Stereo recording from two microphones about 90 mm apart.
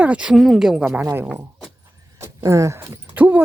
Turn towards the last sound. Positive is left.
turn(degrees=-20)  # may be behind; listen again after turning